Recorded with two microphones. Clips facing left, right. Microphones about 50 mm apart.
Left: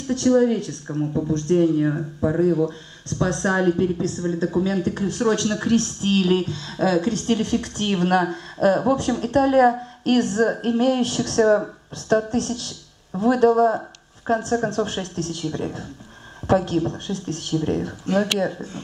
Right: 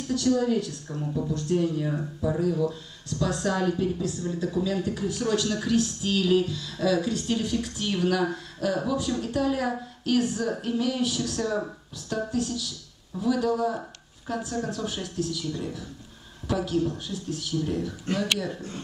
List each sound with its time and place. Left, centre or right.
0.1 s speech: left
1.3 s a woman's voice: left
1.6 s a woman's voice: left
4.8 s a woman's voice: left